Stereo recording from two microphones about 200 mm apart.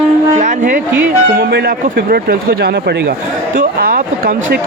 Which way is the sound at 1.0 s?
50° right (ahead or behind).